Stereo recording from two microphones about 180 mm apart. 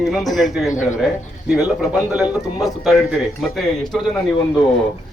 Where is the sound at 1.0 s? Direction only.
5° right (ahead or behind).